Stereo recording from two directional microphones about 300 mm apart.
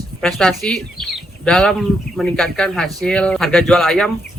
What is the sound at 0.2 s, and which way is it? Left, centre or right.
Speech, centre.